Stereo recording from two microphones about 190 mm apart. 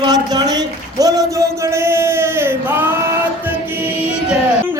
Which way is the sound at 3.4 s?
10° right (ahead or behind).